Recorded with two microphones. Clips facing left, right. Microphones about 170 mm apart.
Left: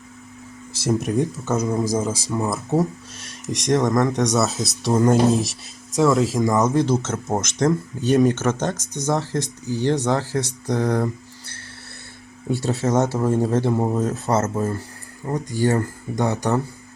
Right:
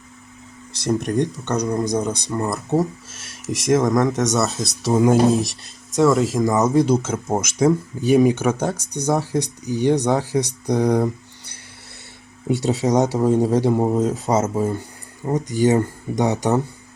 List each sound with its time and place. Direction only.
0.7 s speech: centre (ahead or behind)
6.8 s speech: 15° right (ahead or behind)